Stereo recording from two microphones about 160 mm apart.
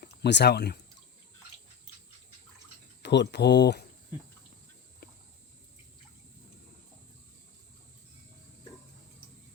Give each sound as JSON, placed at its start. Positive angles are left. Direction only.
{"t": 0.0, "sound": "speech", "side_deg": 90}
{"t": 3.0, "sound": "speech", "side_deg": 90}